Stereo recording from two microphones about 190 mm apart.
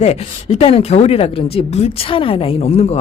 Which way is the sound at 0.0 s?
35° left (ahead or behind).